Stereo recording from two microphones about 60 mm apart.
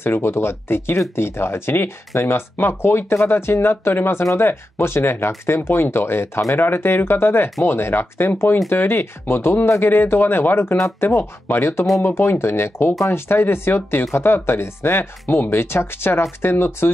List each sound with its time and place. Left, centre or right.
0.0 s speech: left